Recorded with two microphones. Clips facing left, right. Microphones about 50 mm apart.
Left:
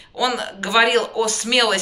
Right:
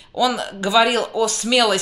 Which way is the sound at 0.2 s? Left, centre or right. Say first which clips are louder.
Right 2 dB; left.